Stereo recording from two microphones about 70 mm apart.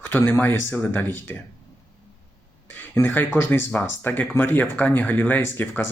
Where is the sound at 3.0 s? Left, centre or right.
Left.